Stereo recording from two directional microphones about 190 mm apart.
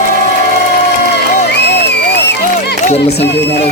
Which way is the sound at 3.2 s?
60° left (ahead or behind).